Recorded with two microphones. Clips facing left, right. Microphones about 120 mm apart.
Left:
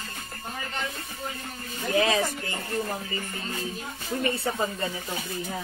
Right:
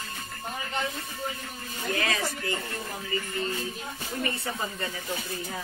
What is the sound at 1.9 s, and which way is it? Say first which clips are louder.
Speech: left 6 dB; 25° left (ahead or behind).